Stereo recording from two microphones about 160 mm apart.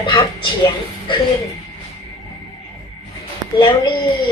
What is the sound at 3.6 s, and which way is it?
Speech, 30° left (ahead or behind).